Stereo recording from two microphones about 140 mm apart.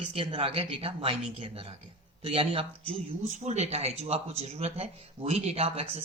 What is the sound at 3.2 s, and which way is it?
Speech, 55° right (ahead or behind).